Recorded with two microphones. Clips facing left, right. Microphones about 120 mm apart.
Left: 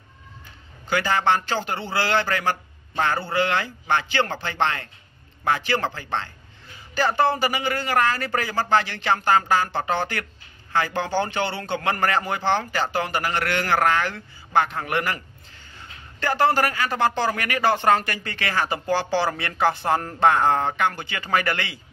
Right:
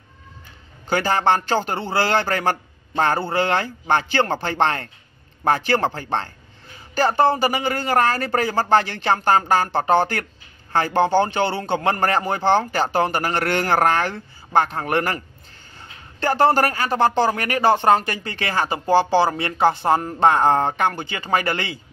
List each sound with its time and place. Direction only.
0.8 s speech: 40° right (ahead or behind)
7.4 s speech: 35° right (ahead or behind)
11.0 s speech: 25° right (ahead or behind)